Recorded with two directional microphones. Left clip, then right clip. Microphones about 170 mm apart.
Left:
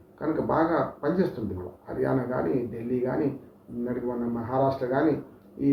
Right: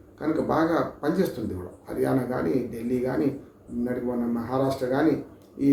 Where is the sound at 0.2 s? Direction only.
10° right (ahead or behind).